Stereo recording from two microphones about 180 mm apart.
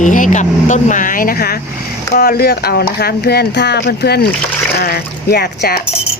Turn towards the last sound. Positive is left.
turn(degrees=60)  # may be behind; listen again after turning